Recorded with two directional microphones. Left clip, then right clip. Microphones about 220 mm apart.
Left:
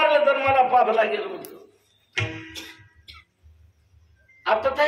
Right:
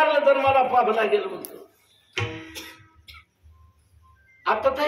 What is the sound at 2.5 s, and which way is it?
Music, 20° right (ahead or behind).